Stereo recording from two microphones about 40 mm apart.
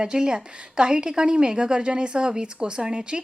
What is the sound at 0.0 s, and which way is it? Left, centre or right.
A woman's voice, right.